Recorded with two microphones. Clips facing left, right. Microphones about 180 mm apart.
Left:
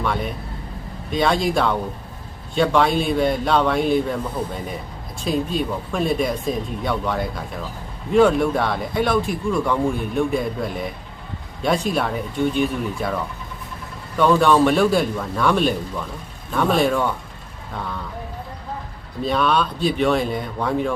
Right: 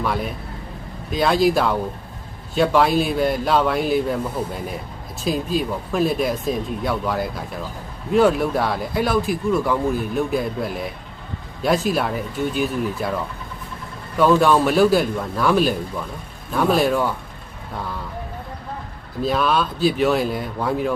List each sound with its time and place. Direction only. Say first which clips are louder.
0.0 s speech: even; centre (ahead or behind)
14.2 s speech: even; 5° right (ahead or behind)
19.2 s speech: even; centre (ahead or behind)